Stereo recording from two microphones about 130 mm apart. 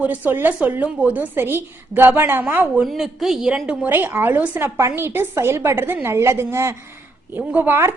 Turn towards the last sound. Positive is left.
turn(degrees=-20)  # may be behind; listen again after turning